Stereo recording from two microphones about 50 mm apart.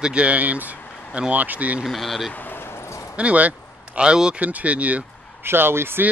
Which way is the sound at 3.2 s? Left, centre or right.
Right.